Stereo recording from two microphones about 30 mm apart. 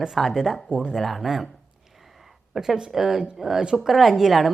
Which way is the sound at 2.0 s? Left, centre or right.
Centre.